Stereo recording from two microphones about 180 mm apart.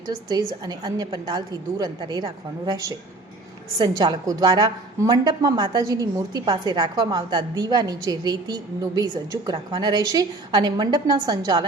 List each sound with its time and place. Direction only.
0.3 s a woman's voice: 20° right (ahead or behind)